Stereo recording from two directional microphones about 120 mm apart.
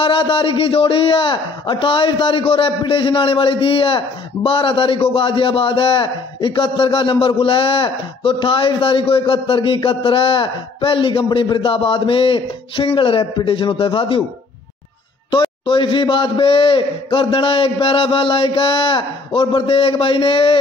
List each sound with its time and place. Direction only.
0.0 s a man's voice: 45° left (ahead or behind)
15.6 s a man's voice: 45° left (ahead or behind)